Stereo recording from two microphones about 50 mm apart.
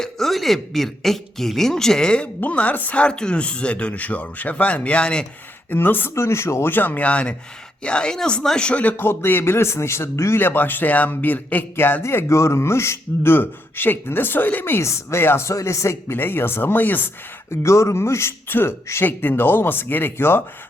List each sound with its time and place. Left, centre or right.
0.0 s speech: centre; by 3.0 s left
3.0 s speech: centre
5.7 s a man's voice: left
6.1 s a man's voice: left
6.7 s speech: left; by 8.8 s centre
9.0 s a man's voice: left
10.3 s speech: left
12.0 s a man's voice: left
14.6 s a man's voice: left
15.2 s a man's voice: left
15.4 s speech: left
16.1 s a man's voice: left
17.5 s a man's voice: left